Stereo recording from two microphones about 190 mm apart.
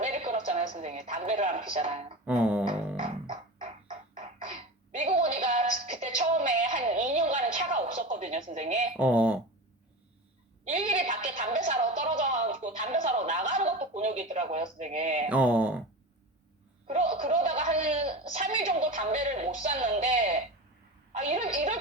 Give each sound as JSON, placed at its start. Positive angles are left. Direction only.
{"t": 0.0, "sound": "a woman's voice", "side_deg": -40}
{"t": 2.2, "sound": "a sound", "side_deg": -5}
{"t": 3.0, "sound": "music", "side_deg": -30}
{"t": 4.1, "sound": "throat clearing", "side_deg": -40}
{"t": 8.9, "sound": "speech", "side_deg": -5}
{"t": 10.7, "sound": "a woman's voice", "side_deg": -40}
{"t": 15.3, "sound": "speech", "side_deg": -5}
{"t": 16.9, "sound": "a woman's voice", "side_deg": -35}